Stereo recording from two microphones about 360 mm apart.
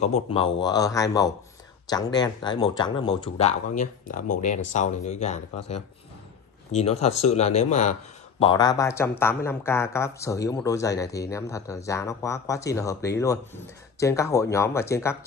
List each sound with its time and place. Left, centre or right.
0.0 s speech: centre
6.7 s speech: centre